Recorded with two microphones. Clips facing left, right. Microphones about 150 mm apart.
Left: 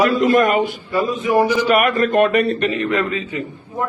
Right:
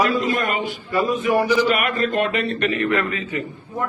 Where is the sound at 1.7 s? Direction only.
45° left (ahead or behind).